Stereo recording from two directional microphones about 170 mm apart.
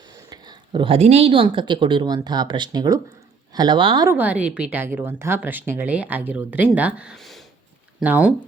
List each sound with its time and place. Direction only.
0.3 s speech: 25° right (ahead or behind)
4.1 s speech: 10° right (ahead or behind)